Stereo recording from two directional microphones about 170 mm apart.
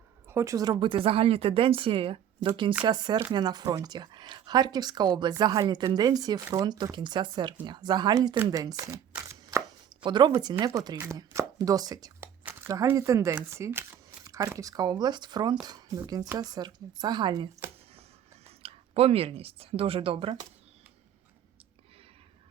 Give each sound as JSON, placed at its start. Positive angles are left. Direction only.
{"t": 0.3, "sound": "a woman's voice", "side_deg": -15}
{"t": 9.1, "sound": "chopping", "side_deg": -15}
{"t": 10.0, "sound": "speech", "side_deg": -25}